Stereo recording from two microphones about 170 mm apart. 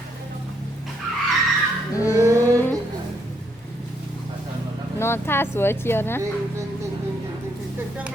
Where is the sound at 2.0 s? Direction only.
20° left (ahead or behind).